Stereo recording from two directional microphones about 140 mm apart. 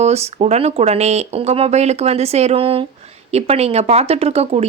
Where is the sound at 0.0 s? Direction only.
50° right (ahead or behind).